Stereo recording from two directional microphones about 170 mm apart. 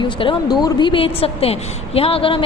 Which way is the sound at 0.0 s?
30° left (ahead or behind).